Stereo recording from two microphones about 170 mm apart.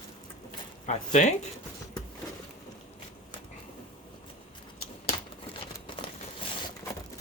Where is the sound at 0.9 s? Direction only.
45° left (ahead or behind).